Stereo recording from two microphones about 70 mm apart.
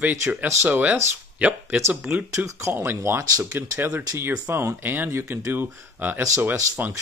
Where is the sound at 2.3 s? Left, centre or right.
Right.